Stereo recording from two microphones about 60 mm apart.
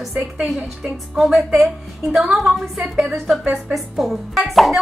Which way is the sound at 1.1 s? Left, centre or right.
Centre.